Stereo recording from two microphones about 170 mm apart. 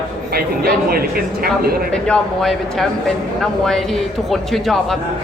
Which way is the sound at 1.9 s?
5° left (ahead or behind).